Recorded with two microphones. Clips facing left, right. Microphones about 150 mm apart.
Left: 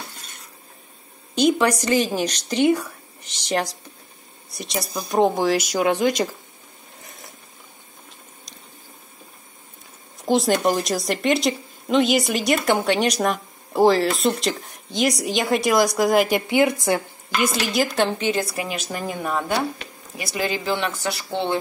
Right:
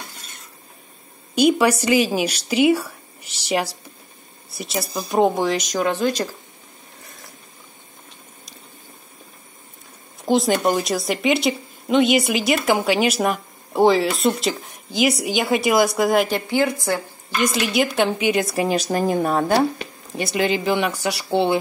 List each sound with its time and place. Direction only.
1.3 s a woman's voice: 10° right (ahead or behind); by 6.2 s 15° left (ahead or behind)
10.2 s speech: centre (ahead or behind)
16.3 s a woman's voice: 15° left (ahead or behind)
17.4 s a woman's voice: centre (ahead or behind); by 19.6 s 35° right (ahead or behind)
20.2 s a woman's voice: 25° right (ahead or behind)